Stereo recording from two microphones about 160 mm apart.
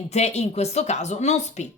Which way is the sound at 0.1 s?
45° left (ahead or behind).